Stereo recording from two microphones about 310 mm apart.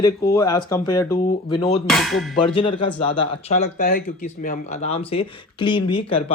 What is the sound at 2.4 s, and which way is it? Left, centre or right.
Speech, centre.